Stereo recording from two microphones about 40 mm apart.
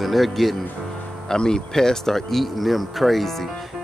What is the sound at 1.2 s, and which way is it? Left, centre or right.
Speech, centre.